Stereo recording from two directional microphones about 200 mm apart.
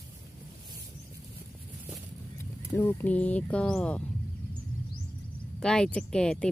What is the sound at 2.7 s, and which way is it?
Speech, 10° left (ahead or behind).